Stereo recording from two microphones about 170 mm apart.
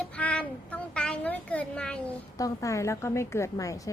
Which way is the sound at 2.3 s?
20° left (ahead or behind).